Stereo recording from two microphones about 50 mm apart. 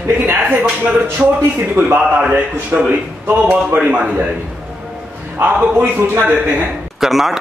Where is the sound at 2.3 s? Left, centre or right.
Right.